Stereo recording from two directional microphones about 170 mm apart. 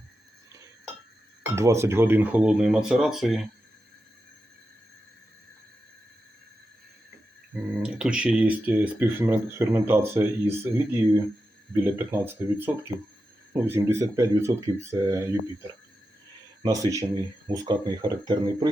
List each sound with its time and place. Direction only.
1.5 s speech: 15° right (ahead or behind)
7.5 s speech: 5° right (ahead or behind)
11.7 s speech: 15° right (ahead or behind)